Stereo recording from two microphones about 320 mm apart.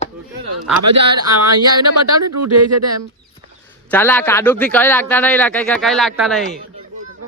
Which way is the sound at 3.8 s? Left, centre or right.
Centre.